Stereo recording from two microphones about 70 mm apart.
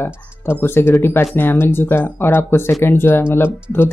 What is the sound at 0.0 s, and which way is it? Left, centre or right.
Speech, left.